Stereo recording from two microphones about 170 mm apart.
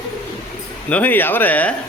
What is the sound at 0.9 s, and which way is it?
Speech, 10° left (ahead or behind).